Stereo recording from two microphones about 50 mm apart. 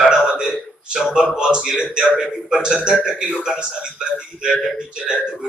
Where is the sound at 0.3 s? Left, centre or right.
Centre.